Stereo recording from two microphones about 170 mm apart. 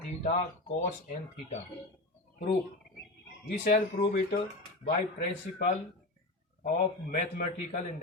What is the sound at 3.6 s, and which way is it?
Speech, 60° left (ahead or behind).